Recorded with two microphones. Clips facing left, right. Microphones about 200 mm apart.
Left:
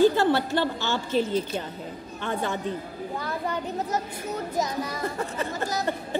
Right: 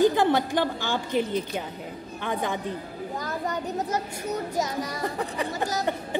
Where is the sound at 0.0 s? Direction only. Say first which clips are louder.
Left 1 dB; 15° right (ahead or behind).